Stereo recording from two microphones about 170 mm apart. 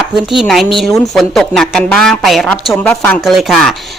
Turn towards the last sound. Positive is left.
turn(degrees=0)  # may be behind; listen again after turning